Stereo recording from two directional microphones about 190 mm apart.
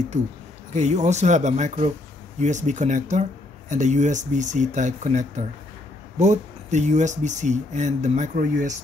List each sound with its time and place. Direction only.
0.7 s speech: 40° right (ahead or behind)